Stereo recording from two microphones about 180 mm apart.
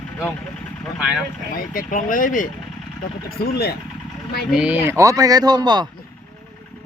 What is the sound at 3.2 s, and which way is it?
Speech, 60° left (ahead or behind).